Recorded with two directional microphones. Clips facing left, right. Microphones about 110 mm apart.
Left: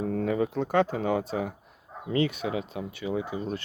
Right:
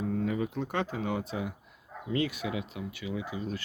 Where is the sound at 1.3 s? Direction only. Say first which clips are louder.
Left 5 dB; 40° left (ahead or behind).